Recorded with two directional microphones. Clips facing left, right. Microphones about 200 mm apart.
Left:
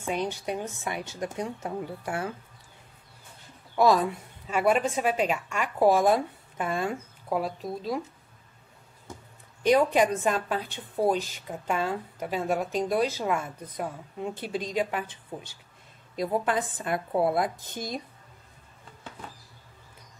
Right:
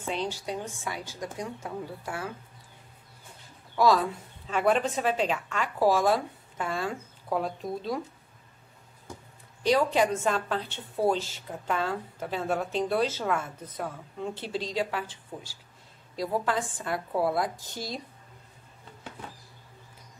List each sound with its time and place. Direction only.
0.0 s speech: 15° left (ahead or behind)
3.7 s a woman's voice: 20° left (ahead or behind)
9.6 s a woman's voice: 20° left (ahead or behind)